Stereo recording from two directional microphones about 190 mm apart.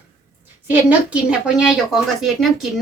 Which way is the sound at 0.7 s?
5° right (ahead or behind).